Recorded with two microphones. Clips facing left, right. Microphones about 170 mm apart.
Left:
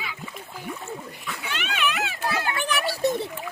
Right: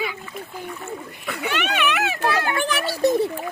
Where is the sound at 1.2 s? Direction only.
65° right (ahead or behind).